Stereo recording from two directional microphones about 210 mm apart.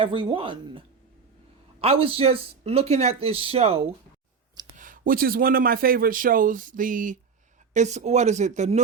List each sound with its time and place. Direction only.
0.0 s speech: 25° right (ahead or behind)
4.8 s a man's voice: 40° right (ahead or behind)